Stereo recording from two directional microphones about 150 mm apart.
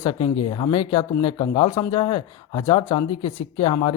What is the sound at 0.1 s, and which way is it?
Speech, 35° left (ahead or behind).